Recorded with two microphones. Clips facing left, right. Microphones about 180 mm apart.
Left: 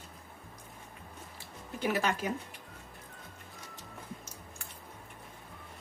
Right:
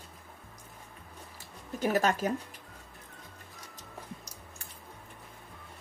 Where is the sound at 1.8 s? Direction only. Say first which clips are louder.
Right 4 dB; 45° right (ahead or behind).